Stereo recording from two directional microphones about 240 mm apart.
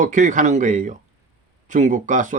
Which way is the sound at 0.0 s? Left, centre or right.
Right.